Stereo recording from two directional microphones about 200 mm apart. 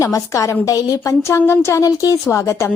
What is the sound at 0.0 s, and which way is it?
A woman's voice, 15° left (ahead or behind).